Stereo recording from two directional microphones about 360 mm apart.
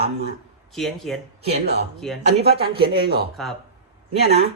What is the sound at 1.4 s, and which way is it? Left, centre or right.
A man's voice, right.